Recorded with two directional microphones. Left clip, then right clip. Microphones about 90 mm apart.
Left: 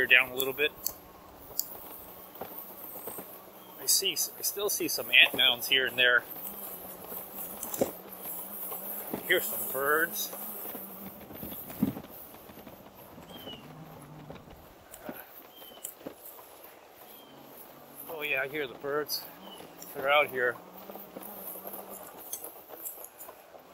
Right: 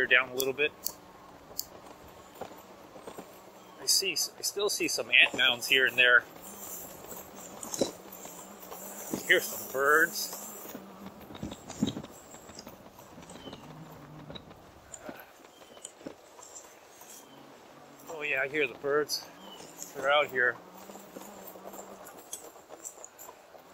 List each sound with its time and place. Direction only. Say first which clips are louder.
0.0 s speech: left 2 dB; 20° left (ahead or behind)
3.8 s speech: right 1 dB; 10° right (ahead or behind)
9.3 s speech: right 3 dB; 5° right (ahead or behind)
18.1 s a sound: even; centre (ahead or behind)
18.5 s speech: right 4 dB; 15° right (ahead or behind)
20.0 s speech: even; 15° left (ahead or behind)